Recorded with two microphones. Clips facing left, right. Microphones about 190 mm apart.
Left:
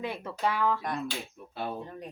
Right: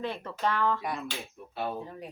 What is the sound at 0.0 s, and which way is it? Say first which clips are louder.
Speech: even; 10° left (ahead or behind).